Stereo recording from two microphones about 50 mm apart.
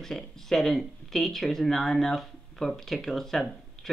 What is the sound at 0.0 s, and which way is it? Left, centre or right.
Speech, centre.